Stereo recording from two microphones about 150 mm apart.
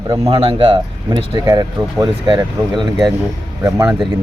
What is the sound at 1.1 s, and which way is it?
Speech, 25° right (ahead or behind).